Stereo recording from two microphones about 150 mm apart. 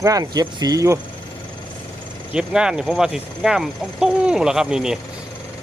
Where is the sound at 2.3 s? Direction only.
5° right (ahead or behind).